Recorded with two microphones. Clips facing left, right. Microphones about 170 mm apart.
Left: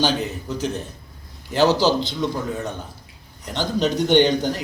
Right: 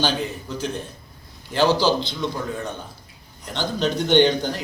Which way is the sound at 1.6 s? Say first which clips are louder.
Left 1 dB; 40° left (ahead or behind).